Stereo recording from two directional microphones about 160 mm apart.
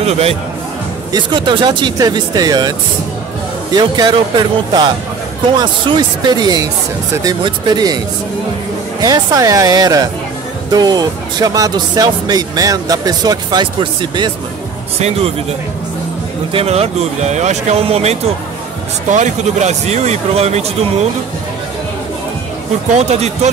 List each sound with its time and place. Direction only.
0.0 s speech: 40° right (ahead or behind)
1.1 s speech: 30° right (ahead or behind)
3.7 s speech: 25° right (ahead or behind)
9.0 s speech: 20° right (ahead or behind)
15.0 s speech: 40° right (ahead or behind)
16.5 s speech: 40° right (ahead or behind)
22.9 s speech: 45° right (ahead or behind)